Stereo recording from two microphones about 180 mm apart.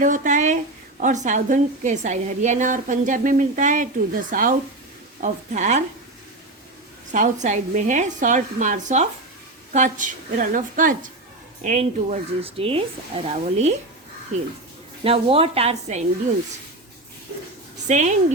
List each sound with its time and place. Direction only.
0.0 s a woman's voice: 45° right (ahead or behind)
7.1 s a woman's voice: 45° right (ahead or behind)
15.0 s speech: 30° right (ahead or behind)
17.8 s speech: 40° right (ahead or behind)